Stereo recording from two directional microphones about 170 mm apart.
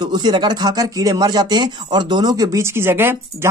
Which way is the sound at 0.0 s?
25° right (ahead or behind).